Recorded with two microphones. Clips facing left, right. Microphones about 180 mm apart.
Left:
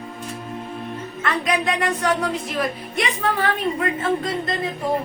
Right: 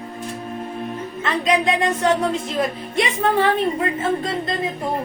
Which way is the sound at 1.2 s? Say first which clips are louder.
Right 3 dB; 20° right (ahead or behind).